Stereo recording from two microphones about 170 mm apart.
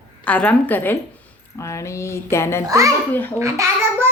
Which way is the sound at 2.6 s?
20° right (ahead or behind).